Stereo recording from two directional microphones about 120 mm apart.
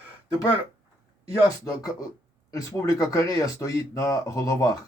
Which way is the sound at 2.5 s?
30° left (ahead or behind).